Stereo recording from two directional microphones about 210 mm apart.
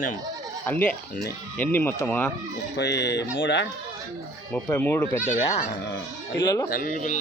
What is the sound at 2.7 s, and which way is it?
Speech, 55° left (ahead or behind).